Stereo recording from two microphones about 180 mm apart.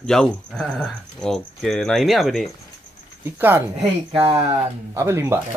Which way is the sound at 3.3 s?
10° right (ahead or behind).